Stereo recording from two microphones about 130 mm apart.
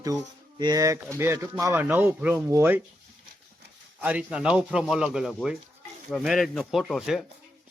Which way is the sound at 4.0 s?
10° right (ahead or behind).